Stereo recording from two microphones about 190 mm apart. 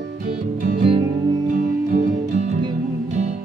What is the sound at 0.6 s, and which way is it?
Music, 35° right (ahead or behind).